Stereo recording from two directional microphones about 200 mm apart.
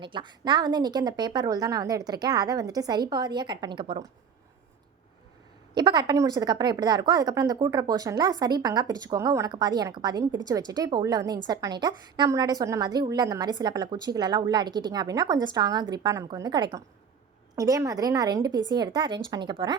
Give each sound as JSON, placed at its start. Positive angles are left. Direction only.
{"t": 0.0, "sound": "a woman's voice", "side_deg": -25}
{"t": 5.7, "sound": "a woman's voice", "side_deg": -20}